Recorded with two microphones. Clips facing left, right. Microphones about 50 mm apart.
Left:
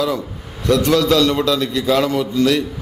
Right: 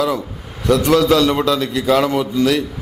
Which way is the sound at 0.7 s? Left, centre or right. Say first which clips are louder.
Right 1 dB; centre.